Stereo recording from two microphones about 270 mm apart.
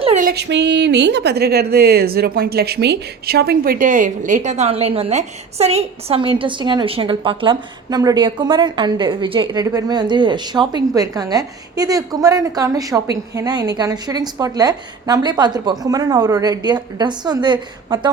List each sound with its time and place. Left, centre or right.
0.0 s a woman's voice: right